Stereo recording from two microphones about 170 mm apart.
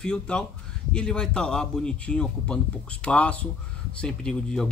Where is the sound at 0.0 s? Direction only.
5° left (ahead or behind).